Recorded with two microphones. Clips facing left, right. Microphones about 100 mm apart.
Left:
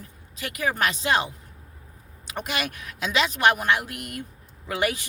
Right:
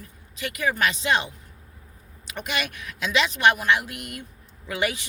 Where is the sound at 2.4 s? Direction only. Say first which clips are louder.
Even; 40° left (ahead or behind).